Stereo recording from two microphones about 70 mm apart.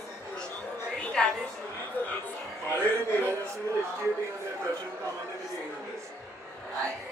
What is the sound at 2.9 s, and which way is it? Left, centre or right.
Speech, right.